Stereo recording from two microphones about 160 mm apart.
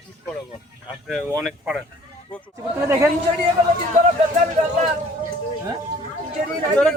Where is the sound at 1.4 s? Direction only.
5° right (ahead or behind).